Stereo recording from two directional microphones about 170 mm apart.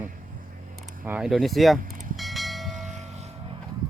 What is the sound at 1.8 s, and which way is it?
Vehicle, 55° right (ahead or behind).